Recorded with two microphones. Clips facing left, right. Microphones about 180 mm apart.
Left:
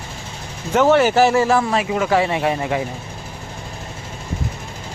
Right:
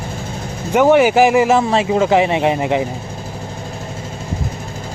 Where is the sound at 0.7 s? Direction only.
15° right (ahead or behind).